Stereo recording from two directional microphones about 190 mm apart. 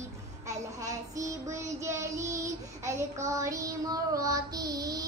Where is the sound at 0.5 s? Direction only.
15° right (ahead or behind).